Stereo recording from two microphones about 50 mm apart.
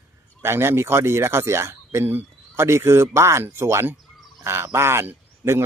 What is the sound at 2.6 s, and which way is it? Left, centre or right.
Speech, right.